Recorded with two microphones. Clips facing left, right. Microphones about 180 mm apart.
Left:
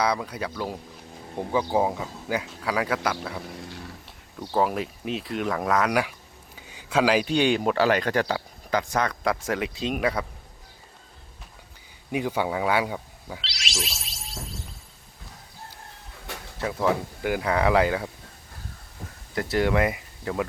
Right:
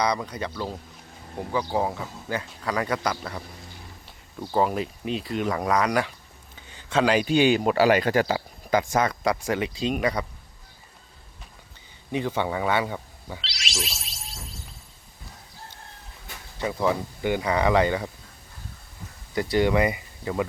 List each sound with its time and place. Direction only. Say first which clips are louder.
0.0 s speech: even; 5° left (ahead or behind)
1.4 s speech: left 2 dB; 15° left (ahead or behind)
12.1 s speech: even; 10° left (ahead or behind)
16.6 s speech: even; centre (ahead or behind)
19.3 s speech: right 2 dB; centre (ahead or behind)